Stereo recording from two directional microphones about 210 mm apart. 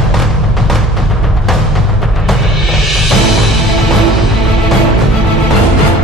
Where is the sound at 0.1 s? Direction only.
Centre (ahead or behind).